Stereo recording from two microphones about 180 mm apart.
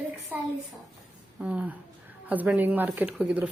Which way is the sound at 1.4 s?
5° right (ahead or behind).